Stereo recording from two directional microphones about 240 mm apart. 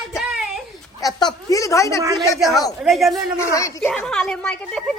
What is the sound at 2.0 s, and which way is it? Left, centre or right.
Speech, centre.